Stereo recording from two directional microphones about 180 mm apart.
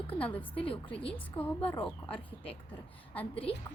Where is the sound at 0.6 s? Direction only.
30° left (ahead or behind).